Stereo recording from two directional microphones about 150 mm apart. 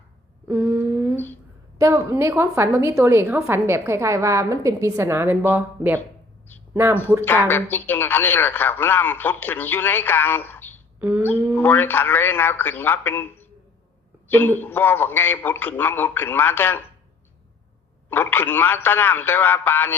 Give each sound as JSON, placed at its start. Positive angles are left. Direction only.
{"t": 0.4, "sound": "a sound", "side_deg": -15}
{"t": 1.8, "sound": "a woman's voice", "side_deg": -20}
{"t": 7.3, "sound": "speech", "side_deg": 10}
{"t": 11.0, "sound": "a woman's voice", "side_deg": -10}
{"t": 11.5, "sound": "speech", "side_deg": 15}
{"t": 18.1, "sound": "speech", "side_deg": 15}